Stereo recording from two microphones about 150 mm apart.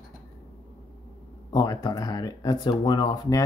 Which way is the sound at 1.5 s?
25° left (ahead or behind).